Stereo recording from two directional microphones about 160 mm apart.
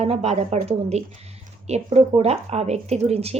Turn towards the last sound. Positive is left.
turn(degrees=-40)  # may be behind; listen again after turning